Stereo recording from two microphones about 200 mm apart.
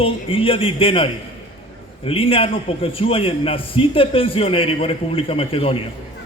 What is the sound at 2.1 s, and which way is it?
A man's voice, 25° left (ahead or behind).